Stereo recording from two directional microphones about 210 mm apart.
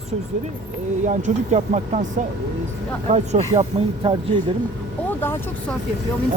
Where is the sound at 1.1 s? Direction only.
35° right (ahead or behind).